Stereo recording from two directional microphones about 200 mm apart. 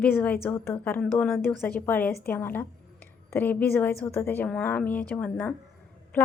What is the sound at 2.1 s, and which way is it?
Speech, 50° left (ahead or behind).